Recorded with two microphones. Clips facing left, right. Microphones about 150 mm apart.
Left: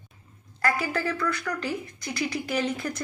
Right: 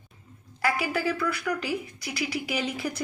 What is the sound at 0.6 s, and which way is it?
A woman's voice, 10° right (ahead or behind).